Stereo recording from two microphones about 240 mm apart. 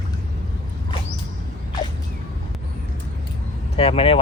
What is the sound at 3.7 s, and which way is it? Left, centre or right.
Speech, left.